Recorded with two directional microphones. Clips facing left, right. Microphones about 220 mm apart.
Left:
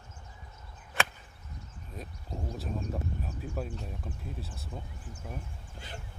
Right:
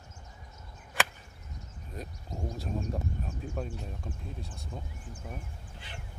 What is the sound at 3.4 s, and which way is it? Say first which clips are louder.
Speech: even; 5° left (ahead or behind).